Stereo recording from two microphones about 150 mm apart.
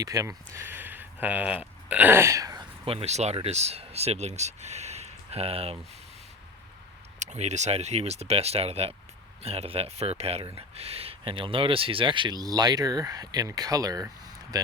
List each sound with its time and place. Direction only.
0.0 s speech: 25° right (ahead or behind)
2.8 s speech: 40° right (ahead or behind)
7.2 s speech: 50° right (ahead or behind); by 14.7 s 25° right (ahead or behind)